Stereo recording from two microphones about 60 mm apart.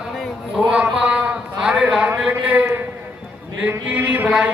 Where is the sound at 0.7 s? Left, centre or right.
Centre.